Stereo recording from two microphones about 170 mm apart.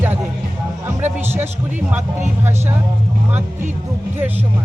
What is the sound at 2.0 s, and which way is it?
Speech, 45° right (ahead or behind).